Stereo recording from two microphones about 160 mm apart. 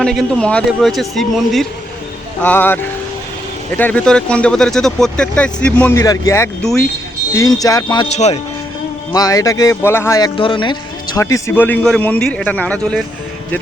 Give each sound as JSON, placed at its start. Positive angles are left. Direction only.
{"t": 0.0, "sound": "speech", "side_deg": 5}
{"t": 6.6, "sound": "speech", "side_deg": 5}
{"t": 7.3, "sound": "speech", "side_deg": 20}
{"t": 8.0, "sound": "speech", "side_deg": 40}
{"t": 9.1, "sound": "speech", "side_deg": 20}
{"t": 11.2, "sound": "speech", "side_deg": 20}